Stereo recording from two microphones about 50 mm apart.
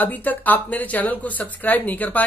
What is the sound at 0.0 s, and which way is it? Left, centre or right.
Speech, left.